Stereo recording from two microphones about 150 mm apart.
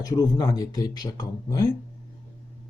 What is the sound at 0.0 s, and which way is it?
Speech, 25° left (ahead or behind).